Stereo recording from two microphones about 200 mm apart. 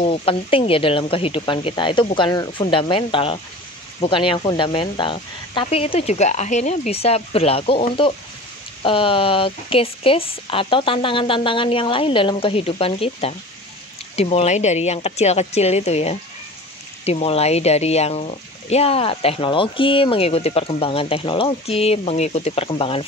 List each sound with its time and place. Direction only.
0.0 s speech: 30° left (ahead or behind)